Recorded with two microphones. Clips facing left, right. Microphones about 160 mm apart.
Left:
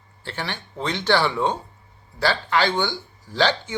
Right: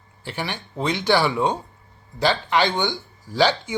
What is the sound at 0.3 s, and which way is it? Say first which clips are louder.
Speech: right 2 dB; 15° right (ahead or behind).